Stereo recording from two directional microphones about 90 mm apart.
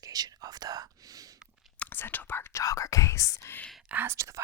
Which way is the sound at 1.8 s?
25° left (ahead or behind).